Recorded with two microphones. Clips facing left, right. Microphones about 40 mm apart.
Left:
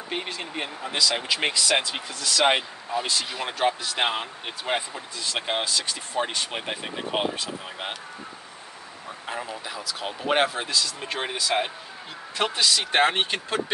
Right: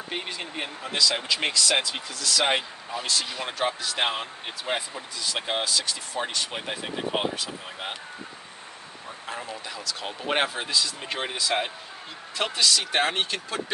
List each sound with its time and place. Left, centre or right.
0.1 s speech: centre
9.2 s speech: centre
13.0 s speech: left